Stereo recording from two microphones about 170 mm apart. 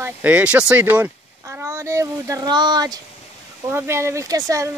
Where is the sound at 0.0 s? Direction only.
10° right (ahead or behind).